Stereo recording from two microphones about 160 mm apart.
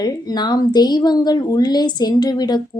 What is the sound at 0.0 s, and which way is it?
A woman's voice, 25° left (ahead or behind).